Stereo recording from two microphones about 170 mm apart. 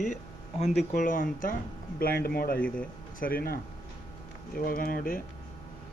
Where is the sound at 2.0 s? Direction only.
65° left (ahead or behind).